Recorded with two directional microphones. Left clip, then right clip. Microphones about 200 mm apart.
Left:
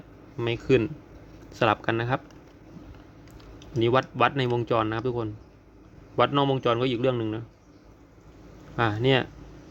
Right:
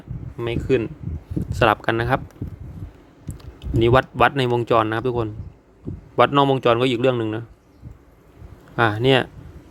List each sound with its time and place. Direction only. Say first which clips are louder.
0.3 s speech: right 2 dB; 5° right (ahead or behind)
3.8 s speech: right 6 dB; 20° right (ahead or behind)
8.7 s speech: right 6 dB; 15° right (ahead or behind)